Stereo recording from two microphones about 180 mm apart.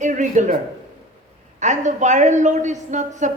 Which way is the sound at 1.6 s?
40° right (ahead or behind).